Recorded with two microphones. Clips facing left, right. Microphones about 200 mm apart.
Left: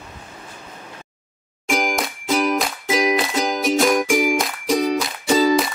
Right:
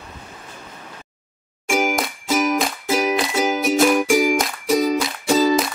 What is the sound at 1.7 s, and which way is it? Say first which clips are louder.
Music: right 1 dB; 5° right (ahead or behind).